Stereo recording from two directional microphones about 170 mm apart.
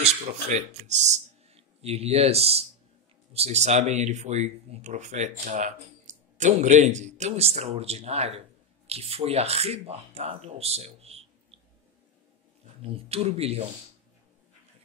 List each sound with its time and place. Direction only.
0.5 s speech: 45° right (ahead or behind)
12.9 s speech: 35° right (ahead or behind)